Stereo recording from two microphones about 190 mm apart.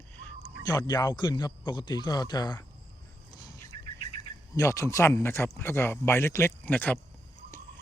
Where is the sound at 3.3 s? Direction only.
20° left (ahead or behind).